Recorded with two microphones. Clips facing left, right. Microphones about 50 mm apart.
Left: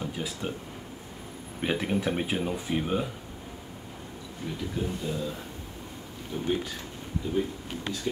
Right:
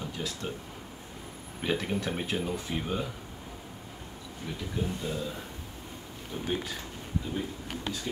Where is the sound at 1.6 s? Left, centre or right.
Centre.